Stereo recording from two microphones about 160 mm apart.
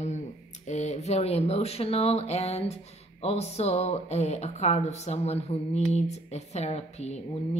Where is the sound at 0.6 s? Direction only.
45° left (ahead or behind).